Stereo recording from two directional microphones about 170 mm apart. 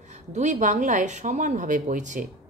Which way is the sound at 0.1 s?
45° right (ahead or behind).